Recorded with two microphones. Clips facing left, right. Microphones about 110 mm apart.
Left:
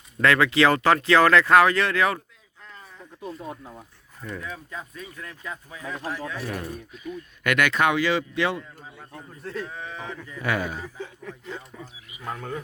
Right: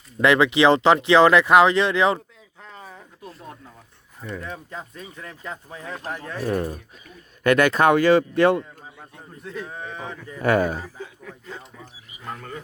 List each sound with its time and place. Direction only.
0.2 s speech: 20° right (ahead or behind)
2.6 s a sound: 85° right
3.3 s speech: 5° left (ahead or behind)
4.5 s speech: 30° right (ahead or behind); by 8.6 s 50° right (ahead or behind)
9.4 s speech: 10° right (ahead or behind)
9.9 s speech: 20° right (ahead or behind)
10.2 s speech: 45° right (ahead or behind)
10.8 s speech: 5° right (ahead or behind)